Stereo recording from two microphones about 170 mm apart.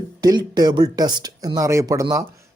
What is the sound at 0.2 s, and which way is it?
Speech, 25° right (ahead or behind).